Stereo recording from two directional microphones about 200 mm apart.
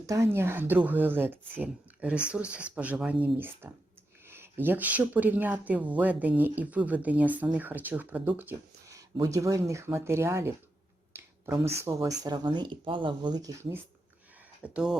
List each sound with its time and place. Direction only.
0.0 s speech: 15° right (ahead or behind)
14.6 s speech: 5° right (ahead or behind)